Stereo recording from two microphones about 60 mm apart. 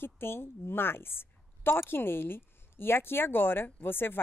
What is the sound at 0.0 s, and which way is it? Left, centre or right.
A woman's voice, left.